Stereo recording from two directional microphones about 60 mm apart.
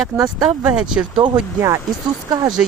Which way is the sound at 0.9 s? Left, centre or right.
Centre.